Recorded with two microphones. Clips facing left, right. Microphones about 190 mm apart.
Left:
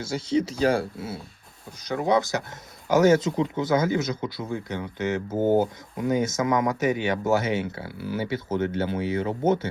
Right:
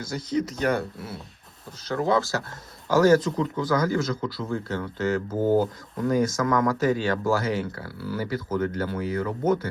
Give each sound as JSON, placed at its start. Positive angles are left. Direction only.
{"t": 0.0, "sound": "speech", "side_deg": 25}